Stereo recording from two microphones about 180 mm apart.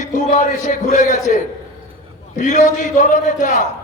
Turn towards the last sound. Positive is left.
turn(degrees=45)  # may be behind; listen again after turning